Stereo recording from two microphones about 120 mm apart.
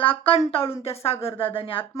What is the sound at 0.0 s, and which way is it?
A woman's voice, 50° left (ahead or behind).